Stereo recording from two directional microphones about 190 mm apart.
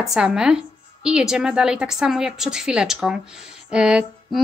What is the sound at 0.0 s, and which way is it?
Speech, centre (ahead or behind).